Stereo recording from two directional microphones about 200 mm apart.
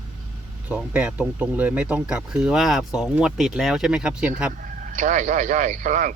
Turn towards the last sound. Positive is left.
turn(degrees=-40)  # may be behind; listen again after turning